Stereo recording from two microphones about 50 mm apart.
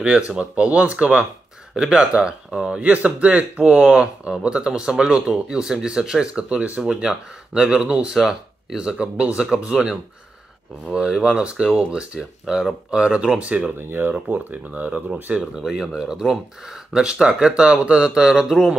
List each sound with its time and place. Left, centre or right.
0.3 s speech: right
1.8 s speech: centre
6.8 s speech: centre
8.2 s speech: centre
13.7 s speech: right
14.1 s speech: right
15.5 s speech: centre